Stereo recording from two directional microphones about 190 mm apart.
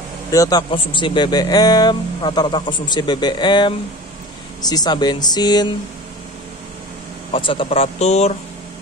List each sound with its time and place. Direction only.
0.3 s speech: 20° left (ahead or behind)
7.3 s speech: 30° left (ahead or behind)